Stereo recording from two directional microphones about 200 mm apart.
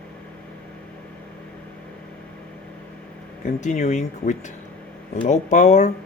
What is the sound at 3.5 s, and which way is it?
Speech, 35° left (ahead or behind).